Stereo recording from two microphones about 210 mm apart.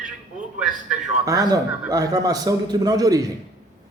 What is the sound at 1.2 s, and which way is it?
A man's voice, 15° right (ahead or behind).